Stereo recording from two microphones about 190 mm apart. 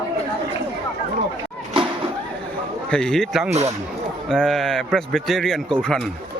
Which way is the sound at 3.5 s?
35° right (ahead or behind).